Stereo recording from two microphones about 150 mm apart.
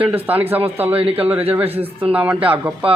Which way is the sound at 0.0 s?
10° right (ahead or behind).